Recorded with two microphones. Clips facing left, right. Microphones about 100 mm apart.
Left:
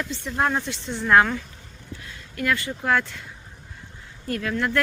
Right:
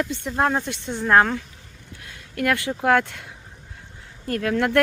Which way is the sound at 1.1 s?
40° right (ahead or behind).